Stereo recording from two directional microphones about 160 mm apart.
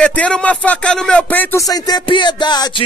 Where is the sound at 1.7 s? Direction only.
30° left (ahead or behind).